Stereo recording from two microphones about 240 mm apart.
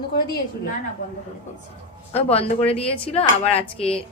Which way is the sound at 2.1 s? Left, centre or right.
Left.